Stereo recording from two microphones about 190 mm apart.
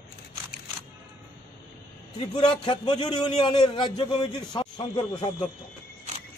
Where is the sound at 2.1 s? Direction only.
25° left (ahead or behind).